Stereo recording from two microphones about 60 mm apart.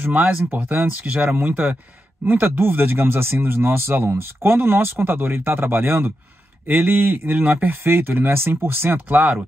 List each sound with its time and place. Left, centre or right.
0.0 s speech: right
9.1 s speech: right